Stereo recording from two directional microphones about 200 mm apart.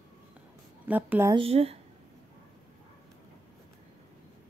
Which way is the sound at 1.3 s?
30° right (ahead or behind).